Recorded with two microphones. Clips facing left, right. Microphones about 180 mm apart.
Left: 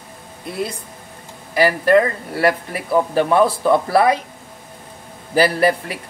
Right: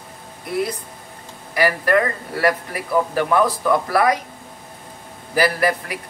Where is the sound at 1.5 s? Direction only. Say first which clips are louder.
Left 4 dB; 25° left (ahead or behind).